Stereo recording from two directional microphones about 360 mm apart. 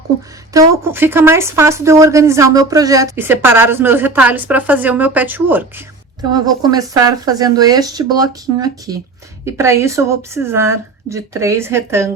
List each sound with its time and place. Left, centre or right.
0.5 s speech: centre